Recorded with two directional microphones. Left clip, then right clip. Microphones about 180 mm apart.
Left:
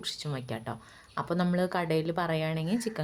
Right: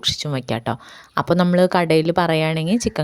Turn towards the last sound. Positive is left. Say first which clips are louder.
# right 11 dB
turn(degrees=-45)  # may be behind; listen again after turning